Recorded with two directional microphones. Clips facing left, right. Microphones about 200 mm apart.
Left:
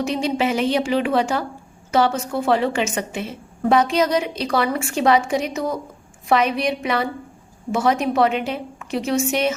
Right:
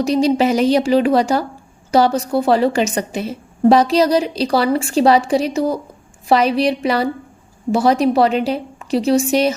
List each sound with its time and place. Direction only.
0.0 s a woman's voice: 35° right (ahead or behind)